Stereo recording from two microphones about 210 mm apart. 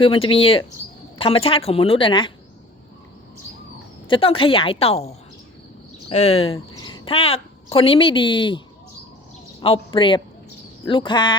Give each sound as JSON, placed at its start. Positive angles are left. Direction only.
{"t": 0.0, "sound": "speech", "side_deg": 25}
{"t": 4.1, "sound": "a woman's voice", "side_deg": 25}